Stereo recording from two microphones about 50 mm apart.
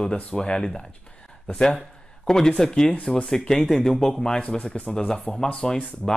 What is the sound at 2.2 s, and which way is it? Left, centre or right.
Speech, centre.